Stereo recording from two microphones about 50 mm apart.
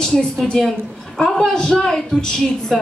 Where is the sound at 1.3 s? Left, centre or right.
Centre.